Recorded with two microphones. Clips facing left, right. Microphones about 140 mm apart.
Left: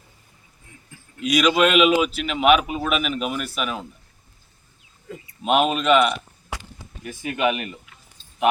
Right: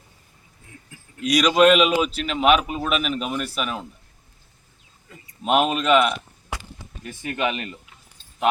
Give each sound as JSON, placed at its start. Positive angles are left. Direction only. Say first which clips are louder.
{"t": 1.2, "sound": "a man's voice", "louder": "right 2 dB", "side_deg": 0}
{"t": 5.4, "sound": "a man's voice", "louder": "even", "side_deg": 0}
{"t": 7.0, "sound": "speech", "louder": "left 3 dB", "side_deg": 10}